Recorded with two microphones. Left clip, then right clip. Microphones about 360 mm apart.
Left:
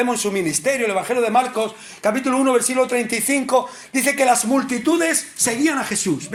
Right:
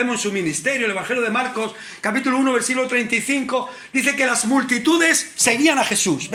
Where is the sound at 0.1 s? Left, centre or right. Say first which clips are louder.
Left 1 dB; centre.